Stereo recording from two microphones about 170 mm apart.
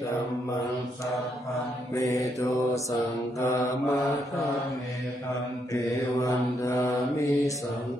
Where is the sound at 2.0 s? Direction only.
20° left (ahead or behind).